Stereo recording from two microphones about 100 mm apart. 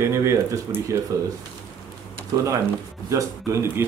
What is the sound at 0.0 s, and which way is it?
Speech, 30° right (ahead or behind).